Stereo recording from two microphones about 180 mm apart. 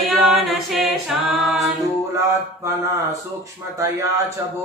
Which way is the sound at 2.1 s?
15° right (ahead or behind).